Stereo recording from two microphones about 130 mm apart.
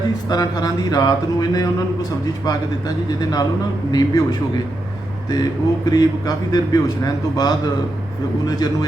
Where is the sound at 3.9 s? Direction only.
30° left (ahead or behind).